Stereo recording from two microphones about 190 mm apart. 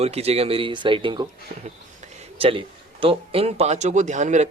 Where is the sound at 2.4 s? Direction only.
30° right (ahead or behind).